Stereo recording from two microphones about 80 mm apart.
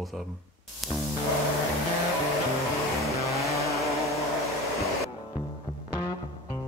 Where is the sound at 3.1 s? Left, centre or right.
Right.